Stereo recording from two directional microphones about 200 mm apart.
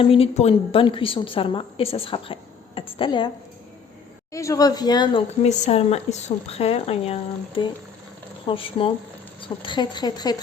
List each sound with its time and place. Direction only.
0.0 s a woman's voice: 30° left (ahead or behind)
5.5 s a woman's voice: 35° left (ahead or behind)